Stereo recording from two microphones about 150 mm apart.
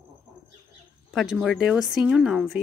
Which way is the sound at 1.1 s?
5° right (ahead or behind).